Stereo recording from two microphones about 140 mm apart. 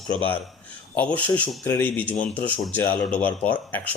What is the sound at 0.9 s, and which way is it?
A man's voice, 10° left (ahead or behind).